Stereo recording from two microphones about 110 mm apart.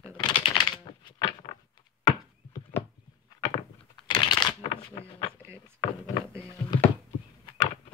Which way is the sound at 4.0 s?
45° left (ahead or behind).